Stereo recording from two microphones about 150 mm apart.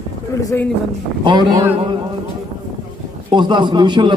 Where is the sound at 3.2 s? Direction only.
30° right (ahead or behind).